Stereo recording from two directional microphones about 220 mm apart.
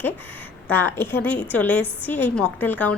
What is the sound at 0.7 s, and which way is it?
A woman's voice, 10° left (ahead or behind).